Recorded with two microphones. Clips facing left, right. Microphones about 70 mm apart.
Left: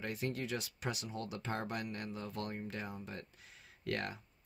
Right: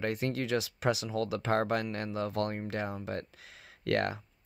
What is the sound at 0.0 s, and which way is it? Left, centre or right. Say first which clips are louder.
Speech: right 7 dB; right.